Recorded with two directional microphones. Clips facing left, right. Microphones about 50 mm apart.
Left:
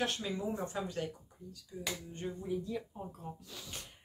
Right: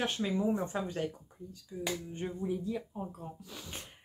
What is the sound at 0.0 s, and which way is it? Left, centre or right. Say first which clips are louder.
Speech: right 4 dB; right.